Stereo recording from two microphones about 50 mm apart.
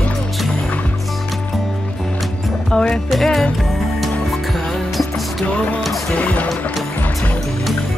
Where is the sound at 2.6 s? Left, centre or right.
Centre.